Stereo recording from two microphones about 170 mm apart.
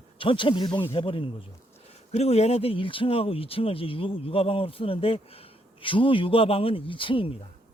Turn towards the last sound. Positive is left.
turn(degrees=30)  # may be behind; listen again after turning